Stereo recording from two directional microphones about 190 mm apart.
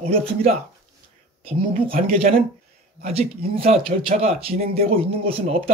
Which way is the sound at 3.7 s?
35° right (ahead or behind).